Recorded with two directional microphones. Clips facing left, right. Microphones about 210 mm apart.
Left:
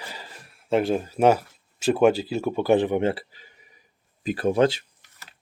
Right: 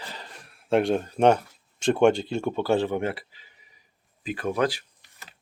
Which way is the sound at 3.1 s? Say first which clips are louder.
Left 5 dB; 40° left (ahead or behind).